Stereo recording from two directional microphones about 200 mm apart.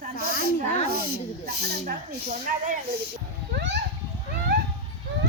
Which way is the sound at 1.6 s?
55° right (ahead or behind).